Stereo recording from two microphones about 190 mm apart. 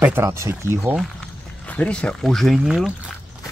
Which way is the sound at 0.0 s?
10° right (ahead or behind).